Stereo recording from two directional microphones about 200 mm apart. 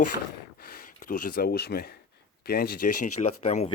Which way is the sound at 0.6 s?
45° left (ahead or behind).